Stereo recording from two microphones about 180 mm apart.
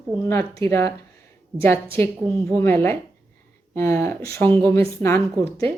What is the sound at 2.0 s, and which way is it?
Speech, 10° left (ahead or behind).